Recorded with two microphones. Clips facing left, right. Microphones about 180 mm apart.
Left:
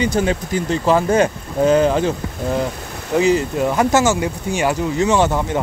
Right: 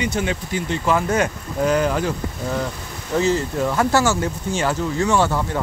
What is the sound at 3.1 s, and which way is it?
Speech, 15° left (ahead or behind).